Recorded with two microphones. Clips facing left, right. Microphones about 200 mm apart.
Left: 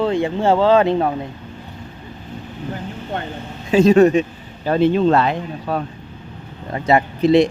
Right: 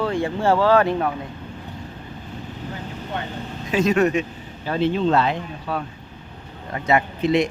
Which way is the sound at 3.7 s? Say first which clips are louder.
Left 7 dB; 30° left (ahead or behind).